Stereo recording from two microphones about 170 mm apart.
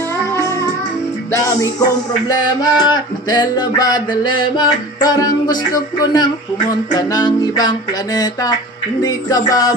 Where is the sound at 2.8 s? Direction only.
25° left (ahead or behind).